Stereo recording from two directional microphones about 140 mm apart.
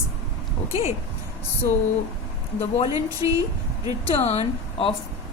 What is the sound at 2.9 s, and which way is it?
Speech, 25° right (ahead or behind).